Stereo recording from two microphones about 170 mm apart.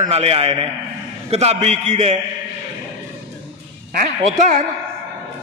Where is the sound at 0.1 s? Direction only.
35° right (ahead or behind).